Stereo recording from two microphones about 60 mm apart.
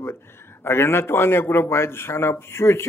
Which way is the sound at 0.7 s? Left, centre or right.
Left.